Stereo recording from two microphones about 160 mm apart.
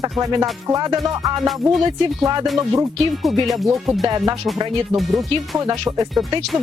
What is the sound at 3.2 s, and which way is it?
Speech, centre (ahead or behind).